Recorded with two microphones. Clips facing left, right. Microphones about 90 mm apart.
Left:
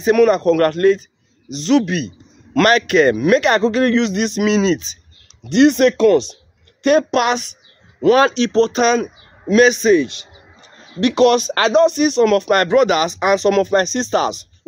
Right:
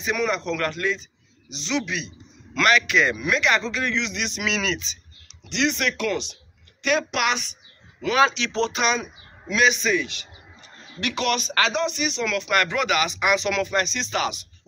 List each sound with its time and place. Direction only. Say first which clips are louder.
0.0 s a man's voice: left 12 dB; 50° left (ahead or behind); by 4.8 s 35° left (ahead or behind)
5.4 s a man's voice: left 13 dB; 45° left (ahead or behind)